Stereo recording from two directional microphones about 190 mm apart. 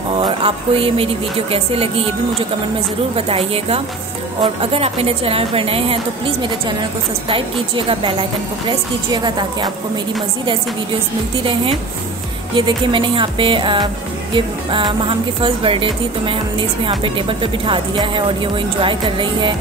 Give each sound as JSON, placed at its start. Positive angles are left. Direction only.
{"t": 0.2, "sound": "a woman's voice", "side_deg": -30}
{"t": 3.2, "sound": "a woman's voice", "side_deg": -30}
{"t": 12.5, "sound": "a woman's voice", "side_deg": -25}